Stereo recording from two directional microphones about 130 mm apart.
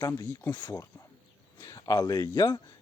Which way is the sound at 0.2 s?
25° left (ahead or behind).